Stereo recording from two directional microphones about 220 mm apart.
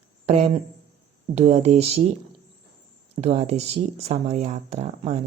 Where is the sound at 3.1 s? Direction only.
30° right (ahead or behind).